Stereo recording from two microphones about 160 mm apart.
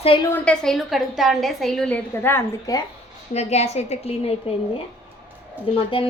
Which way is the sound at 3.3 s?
40° left (ahead or behind).